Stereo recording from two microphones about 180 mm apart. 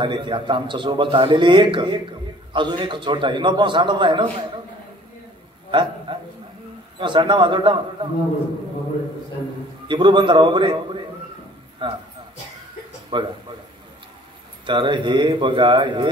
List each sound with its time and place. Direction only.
0.0 s a man's voice: 25° right (ahead or behind)
5.7 s a sound: 25° right (ahead or behind)
7.0 s a man's voice: 25° right (ahead or behind)
9.8 s a man's voice: 25° right (ahead or behind)
11.8 s a man's voice: 25° right (ahead or behind)
13.1 s a man's voice: 25° right (ahead or behind)
14.7 s a man's voice: 25° right (ahead or behind)